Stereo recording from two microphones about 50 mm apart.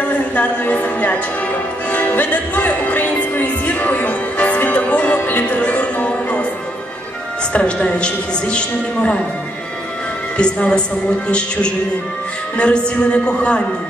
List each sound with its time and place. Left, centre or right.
0.4 s a man's voice: left
1.9 s music: left
7.8 s a man's voice: centre
10.3 s a man's voice: left